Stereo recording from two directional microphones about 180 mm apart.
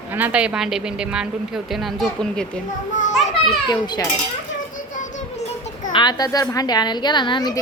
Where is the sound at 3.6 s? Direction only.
25° left (ahead or behind).